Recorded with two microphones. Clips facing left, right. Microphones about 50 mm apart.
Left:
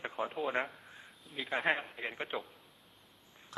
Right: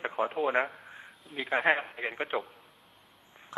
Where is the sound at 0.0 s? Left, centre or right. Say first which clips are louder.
Right 7 dB; right.